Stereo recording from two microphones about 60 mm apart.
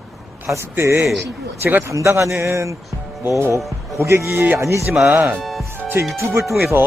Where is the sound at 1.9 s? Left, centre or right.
Right.